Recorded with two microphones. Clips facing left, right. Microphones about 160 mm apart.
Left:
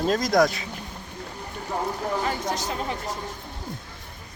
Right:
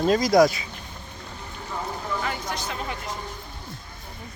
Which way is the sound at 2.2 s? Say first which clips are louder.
Left 3 dB; 40° left (ahead or behind).